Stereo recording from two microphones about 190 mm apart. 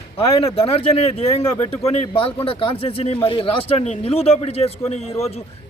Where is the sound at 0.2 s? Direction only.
30° left (ahead or behind).